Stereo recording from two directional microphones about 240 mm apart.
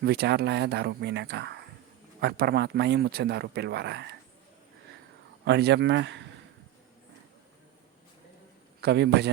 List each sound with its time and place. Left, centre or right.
0.0 s a man's voice: right
5.5 s a man's voice: right
8.8 s a man's voice: right